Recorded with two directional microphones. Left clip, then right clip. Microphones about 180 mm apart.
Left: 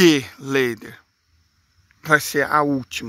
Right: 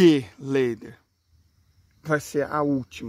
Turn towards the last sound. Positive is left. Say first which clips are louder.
# left 6 dB
turn(degrees=15)  # may be behind; listen again after turning